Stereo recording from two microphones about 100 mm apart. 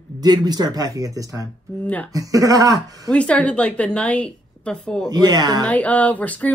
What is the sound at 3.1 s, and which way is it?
A woman's voice, 10° left (ahead or behind).